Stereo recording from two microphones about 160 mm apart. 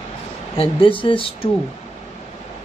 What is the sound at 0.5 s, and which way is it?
Speech, 35° left (ahead or behind).